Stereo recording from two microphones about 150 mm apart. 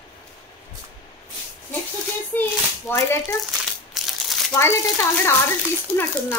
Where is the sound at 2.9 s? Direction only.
15° left (ahead or behind).